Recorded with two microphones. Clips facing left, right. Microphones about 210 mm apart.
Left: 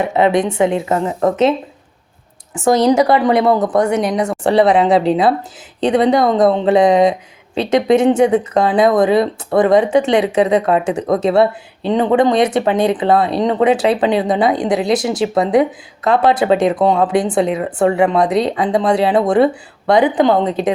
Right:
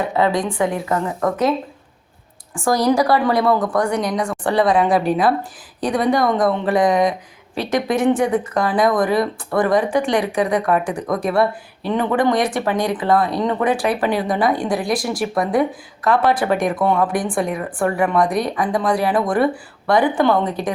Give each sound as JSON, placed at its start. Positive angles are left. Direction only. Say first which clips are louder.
{"t": 0.0, "sound": "a woman's voice", "louder": "left 5 dB", "side_deg": 20}